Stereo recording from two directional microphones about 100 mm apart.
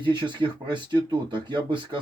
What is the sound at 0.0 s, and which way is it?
Speech, 50° right (ahead or behind).